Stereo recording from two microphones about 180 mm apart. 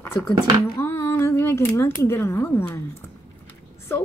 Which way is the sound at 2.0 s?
15° left (ahead or behind).